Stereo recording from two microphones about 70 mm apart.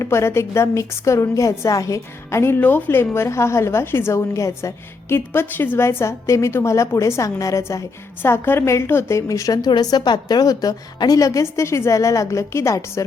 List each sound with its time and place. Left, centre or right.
0.0 s a woman's voice: left
2.6 s a woman's voice: left
8.2 s a woman's voice: left
9.5 s a woman's voice: left